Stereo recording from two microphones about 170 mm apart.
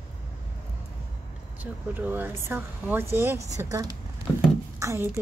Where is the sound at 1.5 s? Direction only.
10° right (ahead or behind).